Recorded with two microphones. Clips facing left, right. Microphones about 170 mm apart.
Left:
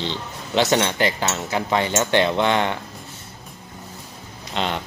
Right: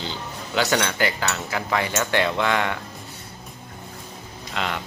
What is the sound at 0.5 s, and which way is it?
Cutlery, 25° left (ahead or behind).